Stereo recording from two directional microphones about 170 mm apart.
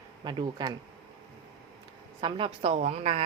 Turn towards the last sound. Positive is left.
turn(degrees=-35)  # may be behind; listen again after turning